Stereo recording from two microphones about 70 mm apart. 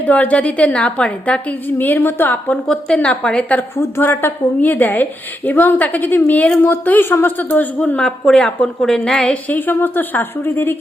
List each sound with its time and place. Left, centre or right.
0.0 s a woman's voice: left
2.0 s a woman's voice: left
2.6 s a woman's voice: centre
3.8 s a woman's voice: left
8.0 s a woman's voice: centre; by 10.8 s left